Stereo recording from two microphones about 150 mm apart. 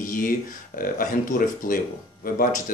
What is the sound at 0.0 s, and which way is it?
Speech, 65° left (ahead or behind).